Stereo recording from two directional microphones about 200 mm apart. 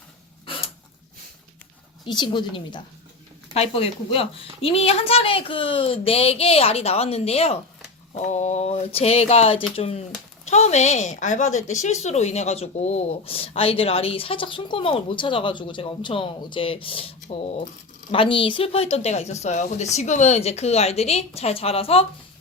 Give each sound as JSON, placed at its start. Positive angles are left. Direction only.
{"t": 2.0, "sound": "speech", "side_deg": 20}